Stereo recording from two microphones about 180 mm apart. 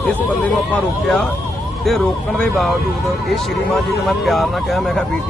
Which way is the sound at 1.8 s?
5° left (ahead or behind).